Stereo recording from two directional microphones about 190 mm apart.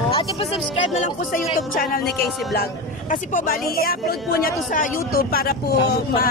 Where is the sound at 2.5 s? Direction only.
50° left (ahead or behind).